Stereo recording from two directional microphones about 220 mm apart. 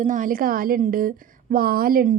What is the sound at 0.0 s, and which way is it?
A woman's voice, 35° right (ahead or behind).